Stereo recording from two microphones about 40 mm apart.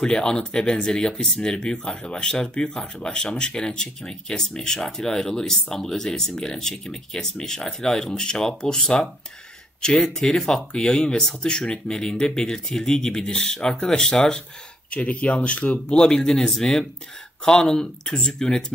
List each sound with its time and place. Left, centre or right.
0.0 s speech: centre
14.9 s speech: left
16.0 s speech: centre